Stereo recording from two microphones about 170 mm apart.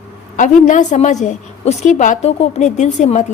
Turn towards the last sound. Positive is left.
turn(degrees=45)  # may be behind; listen again after turning